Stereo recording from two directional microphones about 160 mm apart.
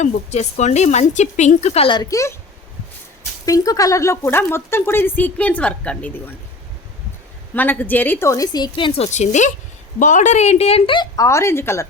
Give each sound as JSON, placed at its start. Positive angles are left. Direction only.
{"t": 0.0, "sound": "a woman's voice", "side_deg": 45}
{"t": 3.4, "sound": "speech", "side_deg": 20}
{"t": 7.5, "sound": "speech", "side_deg": 10}
{"t": 9.0, "sound": "a woman's voice", "side_deg": 45}